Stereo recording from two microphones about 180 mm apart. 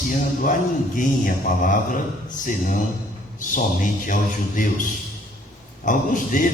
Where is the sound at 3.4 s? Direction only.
45° left (ahead or behind).